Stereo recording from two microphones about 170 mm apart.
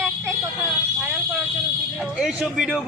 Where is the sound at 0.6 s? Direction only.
5° right (ahead or behind).